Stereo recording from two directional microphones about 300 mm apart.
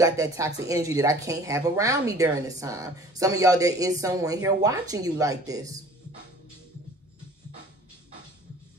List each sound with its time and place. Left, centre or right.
0.0 s speech: centre